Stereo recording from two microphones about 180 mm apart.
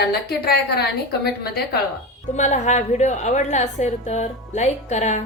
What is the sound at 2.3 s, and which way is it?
A woman's voice, 40° left (ahead or behind).